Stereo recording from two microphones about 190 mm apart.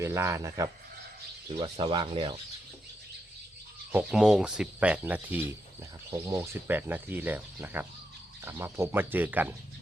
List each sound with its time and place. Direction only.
0.0 s speech: 15° right (ahead or behind)
1.7 s speech: 25° right (ahead or behind)
3.9 s speech: 5° right (ahead or behind)
6.1 s speech: 20° right (ahead or behind)